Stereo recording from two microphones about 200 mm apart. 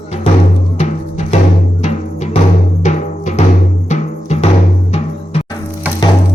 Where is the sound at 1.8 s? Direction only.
35° left (ahead or behind).